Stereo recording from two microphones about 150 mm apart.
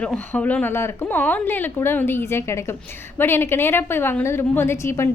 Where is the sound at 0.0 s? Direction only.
10° left (ahead or behind).